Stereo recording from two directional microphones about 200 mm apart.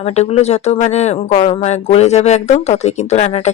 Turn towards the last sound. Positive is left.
turn(degrees=35)  # may be behind; listen again after turning